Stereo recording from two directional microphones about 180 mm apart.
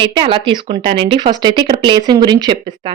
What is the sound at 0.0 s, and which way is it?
Speech, 30° right (ahead or behind).